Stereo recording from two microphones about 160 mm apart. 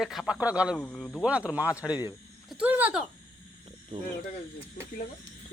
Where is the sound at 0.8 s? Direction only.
5° left (ahead or behind).